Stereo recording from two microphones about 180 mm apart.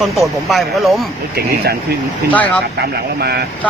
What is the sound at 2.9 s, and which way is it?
Speech, 60° right (ahead or behind).